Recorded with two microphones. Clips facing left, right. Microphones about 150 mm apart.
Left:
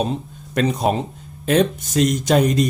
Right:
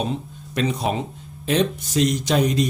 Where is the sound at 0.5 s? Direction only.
45° left (ahead or behind).